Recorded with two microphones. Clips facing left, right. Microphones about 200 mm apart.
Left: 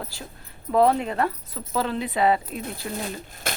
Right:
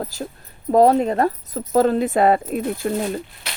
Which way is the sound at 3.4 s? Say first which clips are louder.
Left 5 dB; 50° left (ahead or behind).